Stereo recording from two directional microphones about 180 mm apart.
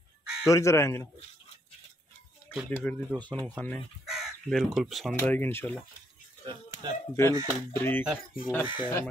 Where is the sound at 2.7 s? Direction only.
10° left (ahead or behind).